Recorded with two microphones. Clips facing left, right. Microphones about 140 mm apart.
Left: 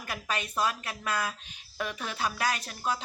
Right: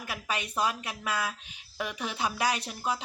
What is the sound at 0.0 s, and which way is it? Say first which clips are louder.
Speech: even; 10° right (ahead or behind).